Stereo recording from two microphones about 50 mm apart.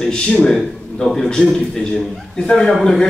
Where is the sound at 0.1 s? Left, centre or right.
Centre.